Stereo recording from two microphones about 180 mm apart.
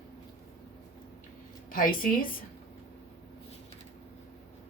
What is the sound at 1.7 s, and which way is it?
Speech, 50° left (ahead or behind).